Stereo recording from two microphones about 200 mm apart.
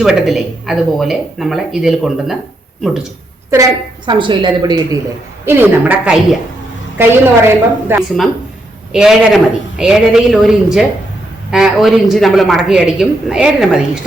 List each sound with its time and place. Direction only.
0.0 s a man's voice: centre (ahead or behind)
3.5 s a woman's voice: 20° right (ahead or behind); by 14.0 s 5° right (ahead or behind)